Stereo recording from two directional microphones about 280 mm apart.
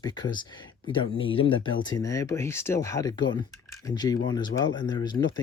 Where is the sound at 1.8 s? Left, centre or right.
Centre.